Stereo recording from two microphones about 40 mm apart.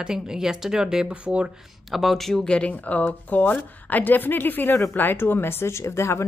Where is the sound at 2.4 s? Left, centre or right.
Left.